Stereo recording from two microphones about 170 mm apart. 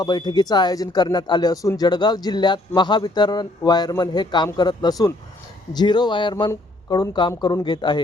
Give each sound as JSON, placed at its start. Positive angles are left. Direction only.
{"t": 0.0, "sound": "speech", "side_deg": 25}